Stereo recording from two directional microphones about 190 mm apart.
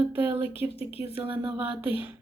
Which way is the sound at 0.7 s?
30° left (ahead or behind).